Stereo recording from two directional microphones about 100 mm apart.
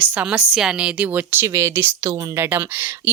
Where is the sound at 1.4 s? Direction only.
30° right (ahead or behind).